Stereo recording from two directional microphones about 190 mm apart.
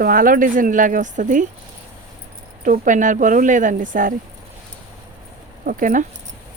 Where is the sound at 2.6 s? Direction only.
45° right (ahead or behind).